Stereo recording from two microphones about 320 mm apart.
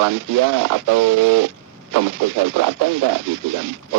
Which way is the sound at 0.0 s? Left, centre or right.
Right.